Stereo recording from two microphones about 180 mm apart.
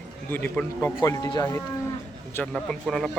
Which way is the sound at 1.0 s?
20° left (ahead or behind).